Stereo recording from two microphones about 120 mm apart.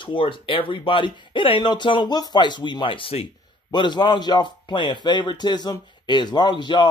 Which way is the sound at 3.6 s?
40° left (ahead or behind).